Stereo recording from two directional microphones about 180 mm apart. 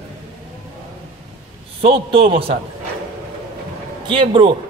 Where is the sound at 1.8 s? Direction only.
30° right (ahead or behind).